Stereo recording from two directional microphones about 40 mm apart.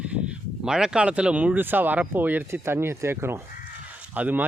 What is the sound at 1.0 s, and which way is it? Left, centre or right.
Speech, right.